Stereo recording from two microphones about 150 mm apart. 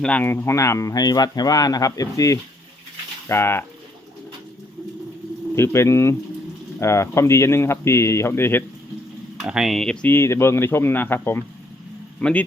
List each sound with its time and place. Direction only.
0.0 s speech: 10° left (ahead or behind)
5.5 s speech: 20° left (ahead or behind)
9.4 s speech: 5° right (ahead or behind)